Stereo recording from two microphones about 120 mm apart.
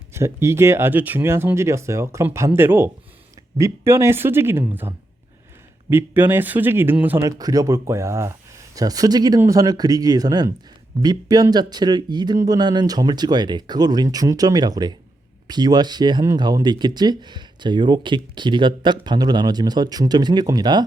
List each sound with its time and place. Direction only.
0.1 s speech: 20° right (ahead or behind)
7.3 s speech: 30° right (ahead or behind)